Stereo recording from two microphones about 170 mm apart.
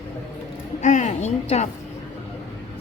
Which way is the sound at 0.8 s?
45° left (ahead or behind).